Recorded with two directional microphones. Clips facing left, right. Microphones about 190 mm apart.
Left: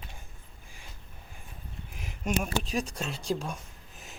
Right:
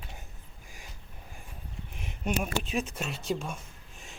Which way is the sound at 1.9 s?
Centre (ahead or behind).